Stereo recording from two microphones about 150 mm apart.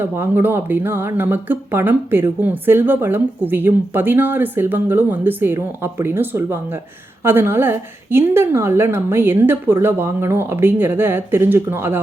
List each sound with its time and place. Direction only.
0.0 s speech: 15° right (ahead or behind)